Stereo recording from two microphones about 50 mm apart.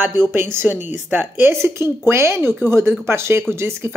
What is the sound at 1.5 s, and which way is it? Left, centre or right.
Speech, right.